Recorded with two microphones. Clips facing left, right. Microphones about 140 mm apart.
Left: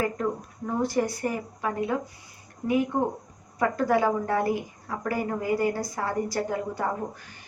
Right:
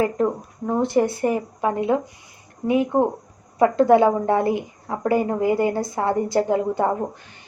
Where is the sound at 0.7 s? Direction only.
25° right (ahead or behind).